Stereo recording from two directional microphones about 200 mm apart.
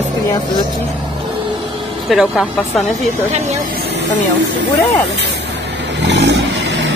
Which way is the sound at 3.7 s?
60° right (ahead or behind).